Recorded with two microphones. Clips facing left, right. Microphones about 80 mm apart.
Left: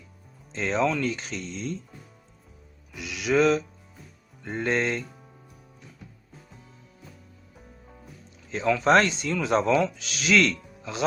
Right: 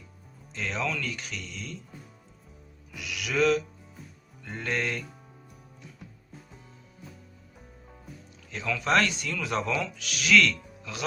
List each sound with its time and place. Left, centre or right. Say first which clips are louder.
0.5 s speech: left 7 dB; left
2.9 s music: left 7 dB; left
4.4 s speech: left 5 dB; left
7.9 s music: right 2 dB; centre
8.4 s speech: left 7 dB; left